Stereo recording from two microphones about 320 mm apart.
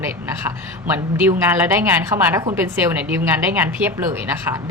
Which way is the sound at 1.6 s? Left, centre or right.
Centre.